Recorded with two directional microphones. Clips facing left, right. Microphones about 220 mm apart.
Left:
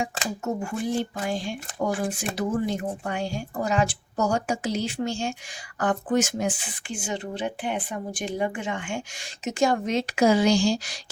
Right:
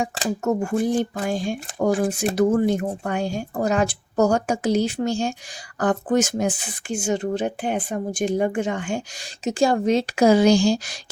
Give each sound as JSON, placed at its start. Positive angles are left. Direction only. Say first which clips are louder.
{"t": 0.0, "sound": "speech", "louder": "right 5 dB", "side_deg": -45}
{"t": 1.9, "sound": "speech", "louder": "right 9 dB", "side_deg": -35}
{"t": 2.3, "sound": "speech", "louder": "right 8 dB", "side_deg": -50}
{"t": 10.4, "sound": "speech", "louder": "right 4 dB", "side_deg": -55}